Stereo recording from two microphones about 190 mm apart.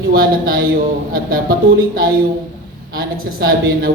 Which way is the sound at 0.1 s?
50° right (ahead or behind).